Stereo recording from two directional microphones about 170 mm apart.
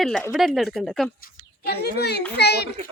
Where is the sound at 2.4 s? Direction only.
75° left (ahead or behind).